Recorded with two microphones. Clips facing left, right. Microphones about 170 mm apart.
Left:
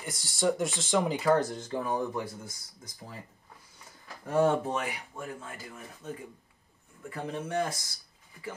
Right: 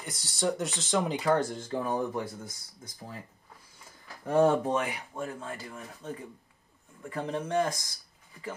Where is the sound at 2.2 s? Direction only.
25° right (ahead or behind).